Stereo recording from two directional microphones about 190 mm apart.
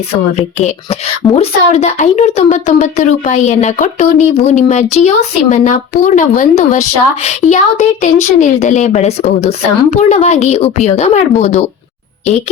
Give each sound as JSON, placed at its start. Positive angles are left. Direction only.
{"t": 0.3, "sound": "speech", "side_deg": 35}